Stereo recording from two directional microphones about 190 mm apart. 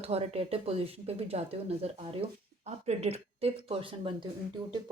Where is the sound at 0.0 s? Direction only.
30° right (ahead or behind).